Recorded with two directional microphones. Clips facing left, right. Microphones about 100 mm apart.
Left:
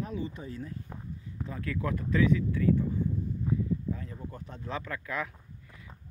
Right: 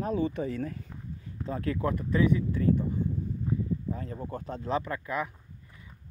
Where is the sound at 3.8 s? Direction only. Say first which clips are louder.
Right 2 dB; 40° right (ahead or behind).